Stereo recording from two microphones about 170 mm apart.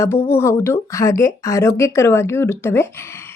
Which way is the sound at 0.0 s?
15° left (ahead or behind).